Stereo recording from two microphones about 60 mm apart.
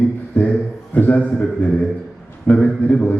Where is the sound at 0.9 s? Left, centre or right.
Left.